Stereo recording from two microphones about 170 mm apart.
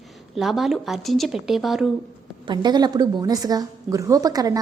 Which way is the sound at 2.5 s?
25° right (ahead or behind).